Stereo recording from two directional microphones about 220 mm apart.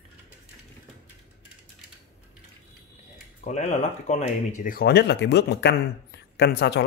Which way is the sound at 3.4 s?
30° left (ahead or behind).